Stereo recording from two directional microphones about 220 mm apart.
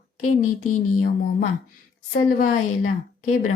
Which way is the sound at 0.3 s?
35° left (ahead or behind).